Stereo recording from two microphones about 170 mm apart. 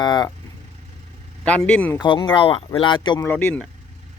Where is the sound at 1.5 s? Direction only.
5° left (ahead or behind).